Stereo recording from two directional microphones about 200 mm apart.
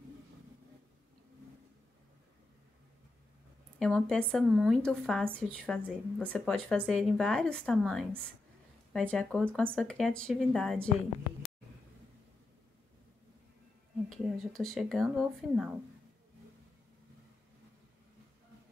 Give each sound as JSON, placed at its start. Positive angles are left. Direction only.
{"t": 3.8, "sound": "speech", "side_deg": 5}
{"t": 5.8, "sound": "speech", "side_deg": -5}
{"t": 6.2, "sound": "speech", "side_deg": 5}
{"t": 14.0, "sound": "speech", "side_deg": 0}